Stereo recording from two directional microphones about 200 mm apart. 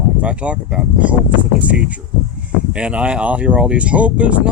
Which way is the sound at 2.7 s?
5° right (ahead or behind).